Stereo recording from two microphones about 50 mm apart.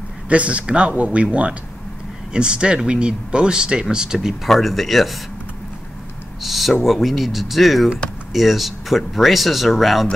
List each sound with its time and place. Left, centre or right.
0.3 s speech: right
4.5 s speech: centre
6.4 s speech: centre